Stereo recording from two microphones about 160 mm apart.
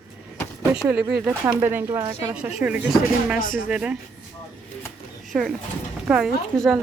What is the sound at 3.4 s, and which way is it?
Speech, 60° left (ahead or behind).